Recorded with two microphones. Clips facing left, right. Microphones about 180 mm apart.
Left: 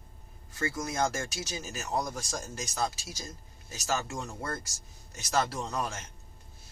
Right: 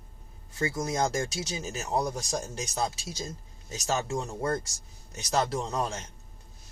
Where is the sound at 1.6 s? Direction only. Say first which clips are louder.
Right 4 dB; 30° right (ahead or behind).